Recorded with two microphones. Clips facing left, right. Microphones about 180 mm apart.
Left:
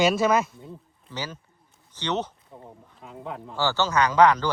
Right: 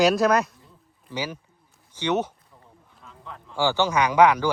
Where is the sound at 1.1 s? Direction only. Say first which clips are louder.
Right 4 dB; 10° right (ahead or behind).